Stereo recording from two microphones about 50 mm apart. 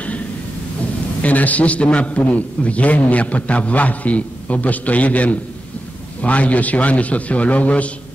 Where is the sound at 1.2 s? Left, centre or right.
Left.